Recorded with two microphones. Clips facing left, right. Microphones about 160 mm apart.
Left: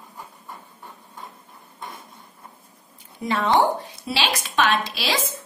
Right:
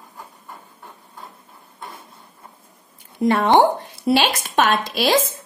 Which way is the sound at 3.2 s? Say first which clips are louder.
Right 5 dB; 55° right (ahead or behind).